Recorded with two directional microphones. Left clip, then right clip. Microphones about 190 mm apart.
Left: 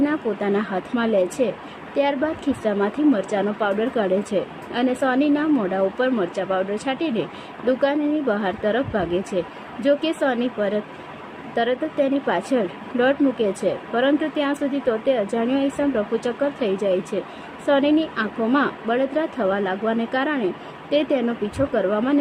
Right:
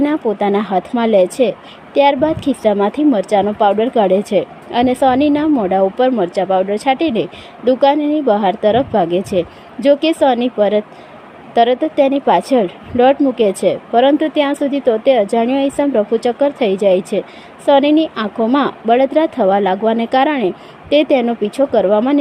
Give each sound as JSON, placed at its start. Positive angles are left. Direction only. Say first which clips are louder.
{"t": 0.0, "sound": "a woman's voice", "louder": "right 7 dB", "side_deg": -25}